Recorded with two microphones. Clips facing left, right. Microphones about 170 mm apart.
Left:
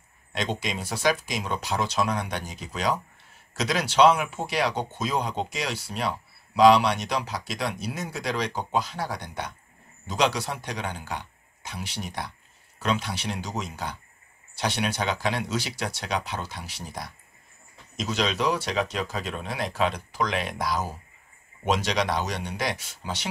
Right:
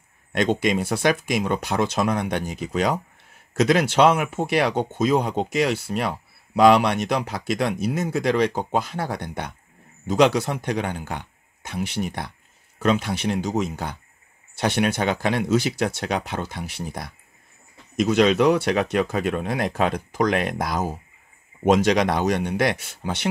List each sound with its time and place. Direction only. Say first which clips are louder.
0.3 s speech: right 9 dB; 55° right (ahead or behind)